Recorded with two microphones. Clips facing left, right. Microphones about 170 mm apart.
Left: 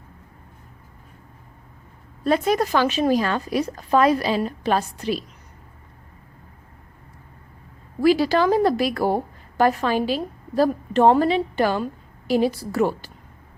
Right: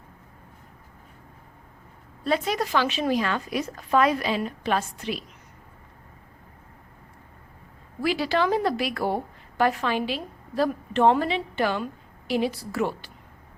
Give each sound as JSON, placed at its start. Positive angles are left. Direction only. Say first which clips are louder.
{"t": 2.2, "sound": "a woman's voice", "louder": "left 5 dB", "side_deg": 45}
{"t": 8.0, "sound": "a woman's voice", "louder": "left 6 dB", "side_deg": 40}